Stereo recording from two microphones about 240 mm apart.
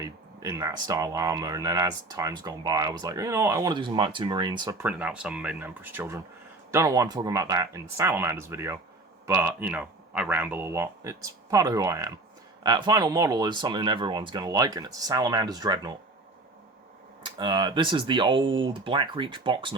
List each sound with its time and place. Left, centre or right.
0.0 s speech: centre
17.2 s speech: centre